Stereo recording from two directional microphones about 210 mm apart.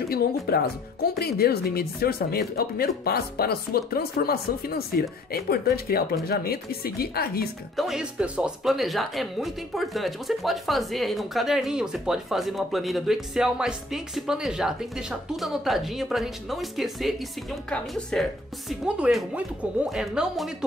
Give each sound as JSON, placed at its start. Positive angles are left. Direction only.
{"t": 0.1, "sound": "speech", "side_deg": 45}
{"t": 7.7, "sound": "speech", "side_deg": 0}